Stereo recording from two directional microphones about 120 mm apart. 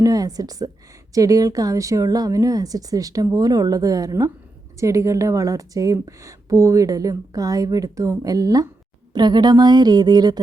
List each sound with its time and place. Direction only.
0.0 s a woman's voice: 30° right (ahead or behind)